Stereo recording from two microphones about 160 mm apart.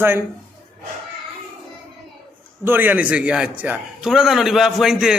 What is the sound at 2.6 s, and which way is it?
A man's voice, 10° right (ahead or behind).